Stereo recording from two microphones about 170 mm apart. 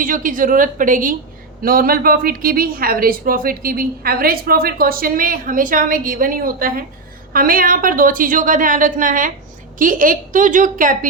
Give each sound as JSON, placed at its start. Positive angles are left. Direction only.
{"t": 0.0, "sound": "a woman's voice", "side_deg": -50}